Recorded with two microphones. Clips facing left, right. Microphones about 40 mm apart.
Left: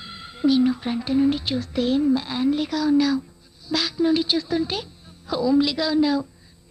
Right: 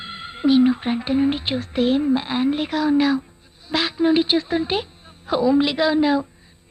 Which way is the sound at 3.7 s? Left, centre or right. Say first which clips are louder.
Right 3 dB; right.